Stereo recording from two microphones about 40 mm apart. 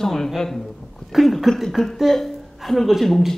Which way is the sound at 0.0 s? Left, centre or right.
Centre.